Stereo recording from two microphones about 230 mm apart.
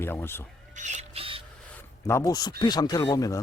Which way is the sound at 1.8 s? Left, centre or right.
Centre.